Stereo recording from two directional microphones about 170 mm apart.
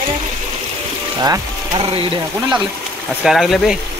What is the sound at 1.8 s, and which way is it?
Speech, 35° right (ahead or behind).